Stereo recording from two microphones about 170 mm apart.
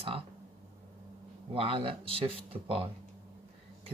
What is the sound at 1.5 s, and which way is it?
Speech, 30° right (ahead or behind).